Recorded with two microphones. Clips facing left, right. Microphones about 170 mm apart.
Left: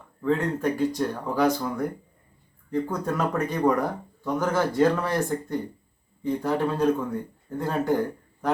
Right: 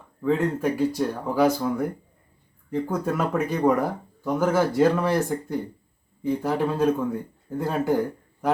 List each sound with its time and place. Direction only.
0.2 s speech: 5° right (ahead or behind)
2.9 s a man's voice: 5° right (ahead or behind)